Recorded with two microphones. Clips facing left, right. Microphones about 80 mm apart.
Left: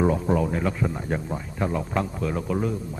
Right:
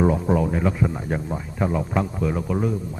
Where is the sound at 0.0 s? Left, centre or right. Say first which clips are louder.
Right 2 dB; centre.